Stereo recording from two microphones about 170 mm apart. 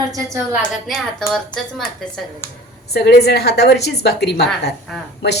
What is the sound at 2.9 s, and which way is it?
A woman's voice, 75° left (ahead or behind).